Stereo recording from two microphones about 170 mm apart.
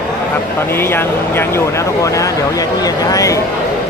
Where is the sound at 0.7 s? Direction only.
15° left (ahead or behind).